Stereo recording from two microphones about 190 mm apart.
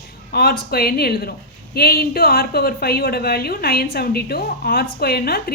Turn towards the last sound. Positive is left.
turn(degrees=55)  # may be behind; listen again after turning